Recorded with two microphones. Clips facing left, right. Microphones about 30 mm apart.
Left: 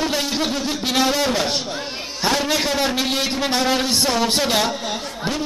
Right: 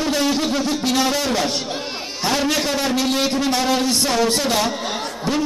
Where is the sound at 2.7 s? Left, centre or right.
Centre.